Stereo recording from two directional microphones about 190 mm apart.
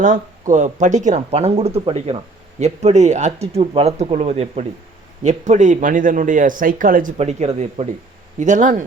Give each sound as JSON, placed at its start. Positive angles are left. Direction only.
{"t": 0.0, "sound": "a man's voice", "side_deg": -40}
{"t": 7.2, "sound": "speech", "side_deg": -35}